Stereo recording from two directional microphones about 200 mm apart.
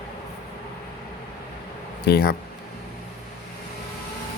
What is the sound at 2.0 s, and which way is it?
Speech, 55° left (ahead or behind).